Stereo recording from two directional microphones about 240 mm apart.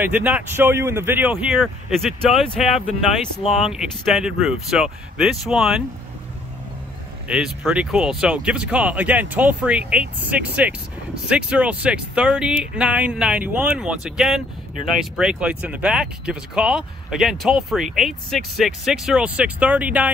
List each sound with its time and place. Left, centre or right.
0.0 s speech: centre
3.4 s speech: left
3.7 s speech: centre
7.2 s speech: centre